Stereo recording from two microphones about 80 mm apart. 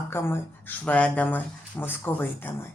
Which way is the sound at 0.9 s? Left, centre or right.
Centre.